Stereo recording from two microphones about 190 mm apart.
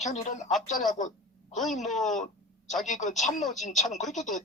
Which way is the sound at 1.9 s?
Centre (ahead or behind).